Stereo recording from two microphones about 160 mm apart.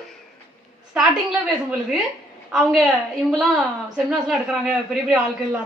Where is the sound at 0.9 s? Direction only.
10° right (ahead or behind).